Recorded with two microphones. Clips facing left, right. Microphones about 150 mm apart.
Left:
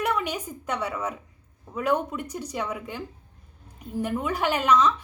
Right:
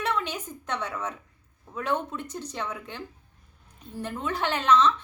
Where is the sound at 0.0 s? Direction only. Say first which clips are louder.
Left 2 dB; 10° left (ahead or behind).